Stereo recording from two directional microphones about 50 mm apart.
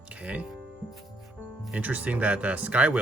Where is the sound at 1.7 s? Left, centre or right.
Right.